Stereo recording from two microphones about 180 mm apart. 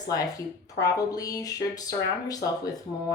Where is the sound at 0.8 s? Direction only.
20° left (ahead or behind).